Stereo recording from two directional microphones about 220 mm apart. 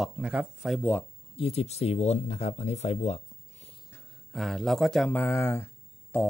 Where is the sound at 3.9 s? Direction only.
5° left (ahead or behind).